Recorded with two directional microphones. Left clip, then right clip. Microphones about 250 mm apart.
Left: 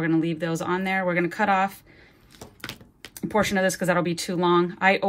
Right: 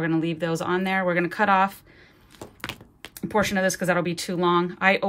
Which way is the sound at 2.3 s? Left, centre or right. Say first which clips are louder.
Right 3 dB; right.